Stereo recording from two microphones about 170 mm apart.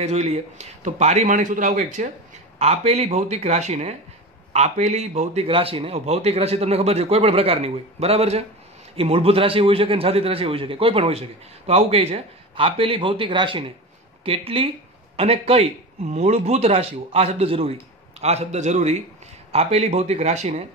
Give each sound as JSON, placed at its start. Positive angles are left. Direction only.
{"t": 0.0, "sound": "a man's voice", "side_deg": -40}